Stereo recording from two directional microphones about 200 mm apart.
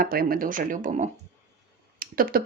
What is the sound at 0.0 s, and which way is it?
Speech, 45° right (ahead or behind).